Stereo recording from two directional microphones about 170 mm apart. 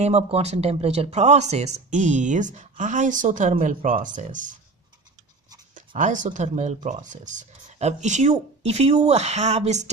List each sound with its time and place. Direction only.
0.0 s speech: 40° right (ahead or behind)
5.8 s speech: 50° right (ahead or behind)